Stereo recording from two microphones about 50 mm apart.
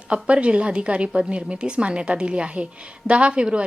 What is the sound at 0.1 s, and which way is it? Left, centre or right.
A woman's voice, right.